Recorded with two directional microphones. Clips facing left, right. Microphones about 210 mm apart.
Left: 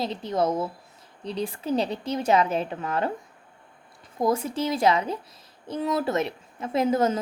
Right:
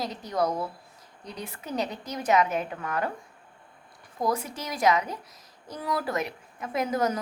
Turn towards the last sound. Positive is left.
turn(degrees=25)  # may be behind; listen again after turning